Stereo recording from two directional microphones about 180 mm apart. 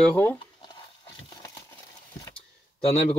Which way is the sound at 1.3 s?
20° left (ahead or behind).